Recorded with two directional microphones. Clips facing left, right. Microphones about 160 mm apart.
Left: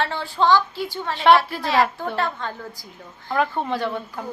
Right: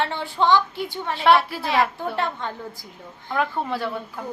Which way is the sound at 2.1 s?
20° right (ahead or behind).